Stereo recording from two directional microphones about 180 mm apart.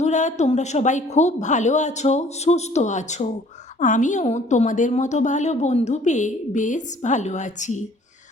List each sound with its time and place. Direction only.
0.0 s a woman's voice: 40° left (ahead or behind)